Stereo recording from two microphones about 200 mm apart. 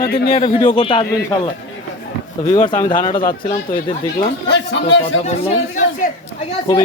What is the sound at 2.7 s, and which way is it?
Speech, 20° left (ahead or behind).